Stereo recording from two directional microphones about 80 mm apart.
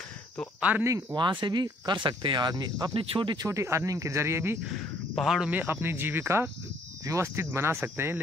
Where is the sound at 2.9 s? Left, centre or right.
Right.